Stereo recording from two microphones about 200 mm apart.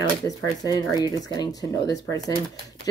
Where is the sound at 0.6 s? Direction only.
20° left (ahead or behind).